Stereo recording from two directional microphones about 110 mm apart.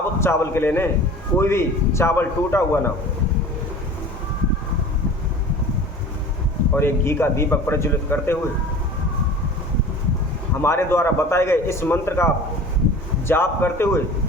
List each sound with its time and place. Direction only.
0.2 s a man's voice: 25° left (ahead or behind)
6.7 s a man's voice: 20° left (ahead or behind)
10.6 s a man's voice: 20° left (ahead or behind)